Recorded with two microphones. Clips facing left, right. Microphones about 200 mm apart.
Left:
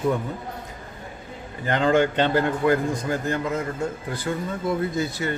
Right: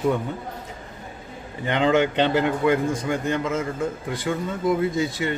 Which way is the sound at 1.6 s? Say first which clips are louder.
Even; 20° right (ahead or behind).